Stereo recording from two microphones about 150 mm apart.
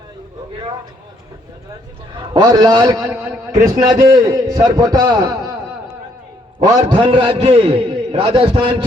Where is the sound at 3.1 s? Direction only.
15° right (ahead or behind).